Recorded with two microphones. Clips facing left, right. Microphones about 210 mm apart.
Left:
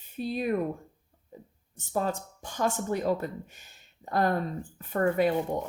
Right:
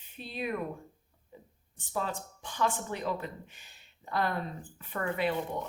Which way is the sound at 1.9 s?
45° left (ahead or behind).